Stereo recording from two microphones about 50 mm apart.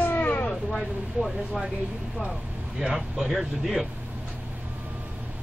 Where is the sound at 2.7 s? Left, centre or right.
Centre.